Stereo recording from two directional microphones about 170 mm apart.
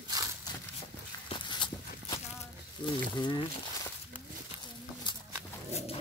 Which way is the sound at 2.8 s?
25° left (ahead or behind).